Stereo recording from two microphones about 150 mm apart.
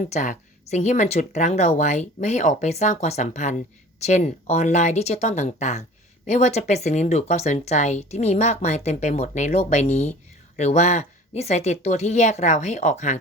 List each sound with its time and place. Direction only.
0.0 s speech: 55° left (ahead or behind)